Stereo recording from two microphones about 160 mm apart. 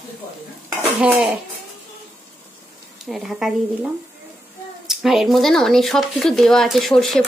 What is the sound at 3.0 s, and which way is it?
Speech, centre (ahead or behind).